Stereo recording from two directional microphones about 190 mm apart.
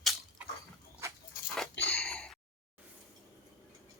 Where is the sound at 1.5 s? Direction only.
Centre (ahead or behind).